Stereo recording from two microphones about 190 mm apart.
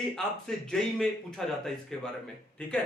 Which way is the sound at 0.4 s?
Centre (ahead or behind).